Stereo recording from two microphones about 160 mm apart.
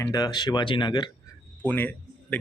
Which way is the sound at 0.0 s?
20° left (ahead or behind).